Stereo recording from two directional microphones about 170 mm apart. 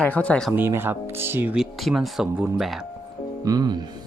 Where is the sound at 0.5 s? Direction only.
15° right (ahead or behind).